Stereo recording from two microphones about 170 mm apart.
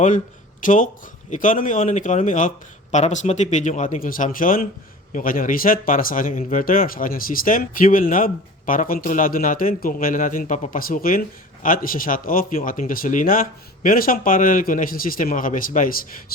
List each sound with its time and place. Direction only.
0.6 s speech: 50° left (ahead or behind)